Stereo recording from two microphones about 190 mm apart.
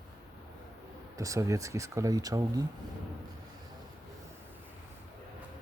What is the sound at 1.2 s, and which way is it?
Speech, 15° right (ahead or behind).